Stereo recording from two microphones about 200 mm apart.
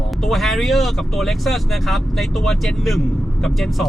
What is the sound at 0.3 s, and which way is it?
Speech, centre (ahead or behind).